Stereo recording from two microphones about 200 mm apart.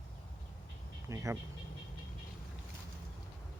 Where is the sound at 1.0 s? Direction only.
15° right (ahead or behind).